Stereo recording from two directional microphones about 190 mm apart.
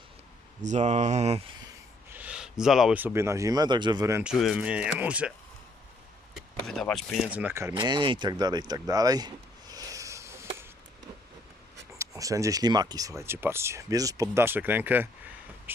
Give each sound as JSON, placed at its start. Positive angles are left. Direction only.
{"t": 0.6, "sound": "speech", "side_deg": -40}
{"t": 2.0, "sound": "speech", "side_deg": -10}
{"t": 4.2, "sound": "speech", "side_deg": -5}
{"t": 6.7, "sound": "speech", "side_deg": 0}
{"t": 7.7, "sound": "speech", "side_deg": -25}
{"t": 11.9, "sound": "speech", "side_deg": -15}